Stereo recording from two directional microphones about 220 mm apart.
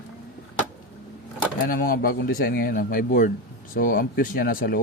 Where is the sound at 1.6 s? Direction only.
40° left (ahead or behind).